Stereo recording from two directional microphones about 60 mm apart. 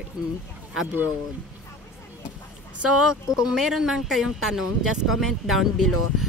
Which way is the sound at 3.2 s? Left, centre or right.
Left.